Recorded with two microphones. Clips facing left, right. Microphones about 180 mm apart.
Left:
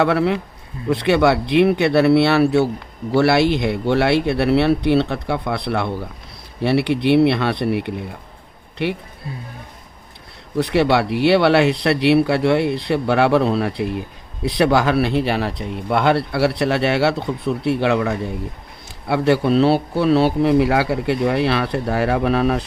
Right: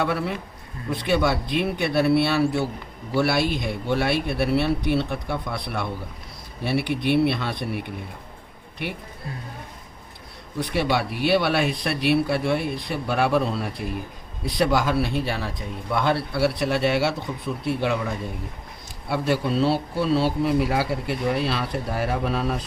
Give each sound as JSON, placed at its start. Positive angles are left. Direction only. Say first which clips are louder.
{"t": 0.0, "sound": "speech", "louder": "left 8 dB", "side_deg": 75}
{"t": 10.6, "sound": "speech", "louder": "left 7 dB", "side_deg": 70}